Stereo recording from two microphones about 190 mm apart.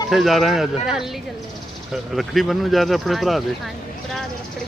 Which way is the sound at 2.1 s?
Centre (ahead or behind).